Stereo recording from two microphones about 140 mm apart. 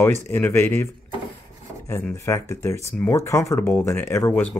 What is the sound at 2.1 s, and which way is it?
Speech, 20° left (ahead or behind).